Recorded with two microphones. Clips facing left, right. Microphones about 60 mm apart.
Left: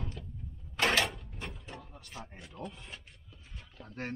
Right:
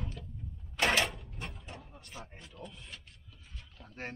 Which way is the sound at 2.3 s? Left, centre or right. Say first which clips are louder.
Left 4 dB; centre.